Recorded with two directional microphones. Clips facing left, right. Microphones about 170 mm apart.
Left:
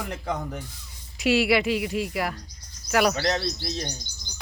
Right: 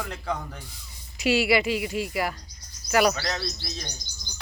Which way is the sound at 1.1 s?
Centre (ahead or behind).